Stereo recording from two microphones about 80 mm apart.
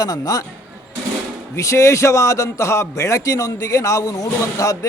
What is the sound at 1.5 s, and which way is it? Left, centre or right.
A man's voice, left.